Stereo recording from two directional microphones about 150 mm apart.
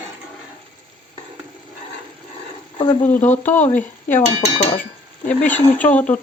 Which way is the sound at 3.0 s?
10° left (ahead or behind).